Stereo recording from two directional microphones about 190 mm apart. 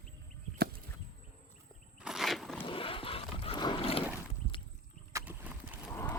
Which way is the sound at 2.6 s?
30° left (ahead or behind).